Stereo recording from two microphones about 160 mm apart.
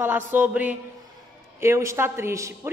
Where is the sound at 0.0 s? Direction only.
10° right (ahead or behind).